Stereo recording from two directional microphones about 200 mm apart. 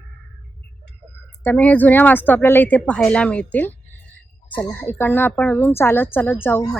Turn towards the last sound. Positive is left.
turn(degrees=10)  # may be behind; listen again after turning